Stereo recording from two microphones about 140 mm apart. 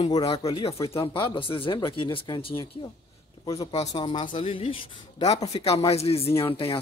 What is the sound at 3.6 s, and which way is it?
Speech, 40° left (ahead or behind).